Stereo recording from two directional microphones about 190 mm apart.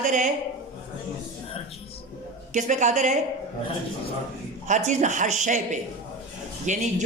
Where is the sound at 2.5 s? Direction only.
40° right (ahead or behind).